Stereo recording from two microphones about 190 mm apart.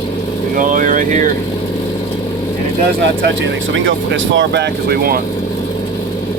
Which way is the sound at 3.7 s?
80° right.